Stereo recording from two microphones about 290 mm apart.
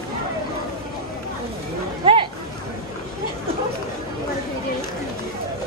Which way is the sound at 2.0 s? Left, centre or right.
Centre.